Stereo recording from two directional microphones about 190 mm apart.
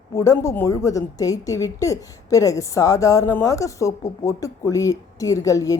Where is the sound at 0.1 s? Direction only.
15° left (ahead or behind).